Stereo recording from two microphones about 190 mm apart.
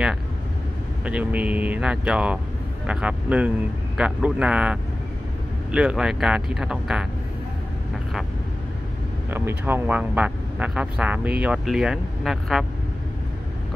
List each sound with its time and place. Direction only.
1.0 s speech: 5° right (ahead or behind)
9.3 s speech: 10° right (ahead or behind)